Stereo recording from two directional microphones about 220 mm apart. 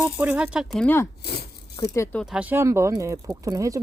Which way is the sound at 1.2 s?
45° left (ahead or behind).